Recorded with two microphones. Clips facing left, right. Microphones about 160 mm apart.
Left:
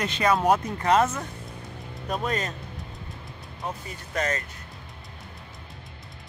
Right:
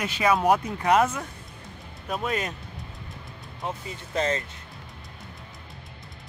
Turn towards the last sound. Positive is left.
turn(degrees=-25)  # may be behind; listen again after turning